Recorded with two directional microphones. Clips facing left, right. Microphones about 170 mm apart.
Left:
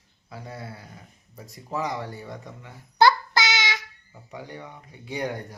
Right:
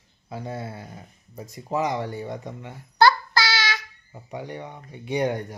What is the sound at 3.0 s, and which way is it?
Child singing, 20° left (ahead or behind).